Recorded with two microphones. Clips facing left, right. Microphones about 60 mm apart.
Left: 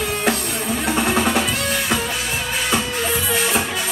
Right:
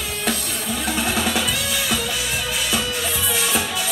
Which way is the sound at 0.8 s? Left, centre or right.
Left.